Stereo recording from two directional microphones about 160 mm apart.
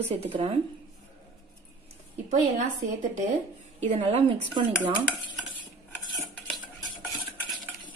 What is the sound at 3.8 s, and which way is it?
Speech, 45° right (ahead or behind).